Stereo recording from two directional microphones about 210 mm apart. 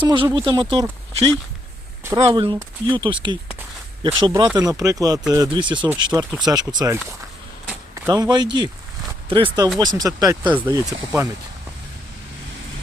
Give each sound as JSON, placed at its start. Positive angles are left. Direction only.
{"t": 0.0, "sound": "speech", "side_deg": -20}
{"t": 8.0, "sound": "speech", "side_deg": -15}
{"t": 10.5, "sound": "speech", "side_deg": -10}